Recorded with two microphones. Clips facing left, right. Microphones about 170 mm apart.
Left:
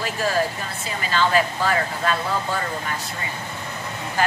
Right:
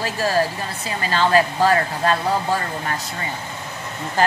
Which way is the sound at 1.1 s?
40° right (ahead or behind).